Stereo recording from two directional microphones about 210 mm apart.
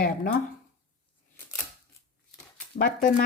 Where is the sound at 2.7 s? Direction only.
40° left (ahead or behind).